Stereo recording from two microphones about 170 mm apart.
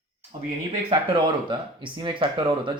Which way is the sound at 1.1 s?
30° right (ahead or behind).